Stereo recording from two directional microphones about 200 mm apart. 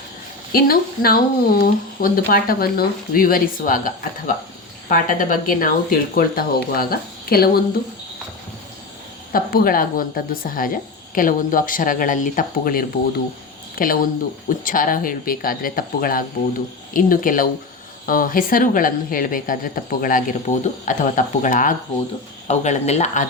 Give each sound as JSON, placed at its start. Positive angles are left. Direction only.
{"t": 0.5, "sound": "speech", "side_deg": 45}
{"t": 9.3, "sound": "speech", "side_deg": 45}